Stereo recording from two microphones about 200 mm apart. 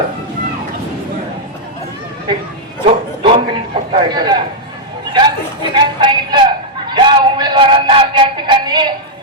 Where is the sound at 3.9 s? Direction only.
20° right (ahead or behind).